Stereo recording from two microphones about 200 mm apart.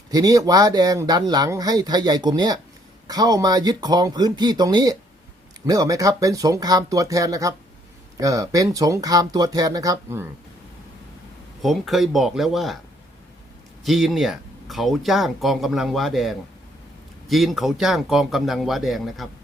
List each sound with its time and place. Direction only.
0.1 s speech: 20° right (ahead or behind)
11.6 s speech: centre (ahead or behind)
13.8 s speech: centre (ahead or behind)